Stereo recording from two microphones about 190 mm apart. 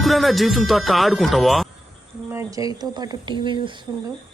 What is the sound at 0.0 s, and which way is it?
Speech, centre (ahead or behind).